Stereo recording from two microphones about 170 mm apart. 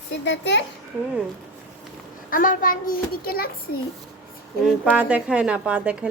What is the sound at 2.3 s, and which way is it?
A child's voice, 55° left (ahead or behind).